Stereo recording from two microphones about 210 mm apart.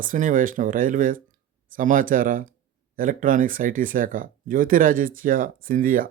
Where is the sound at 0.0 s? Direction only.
40° right (ahead or behind).